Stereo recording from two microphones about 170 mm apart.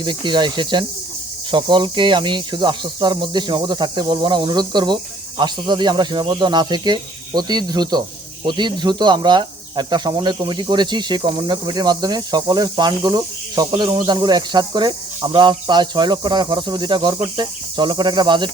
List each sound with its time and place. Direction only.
0.0 s speech: 25° right (ahead or behind)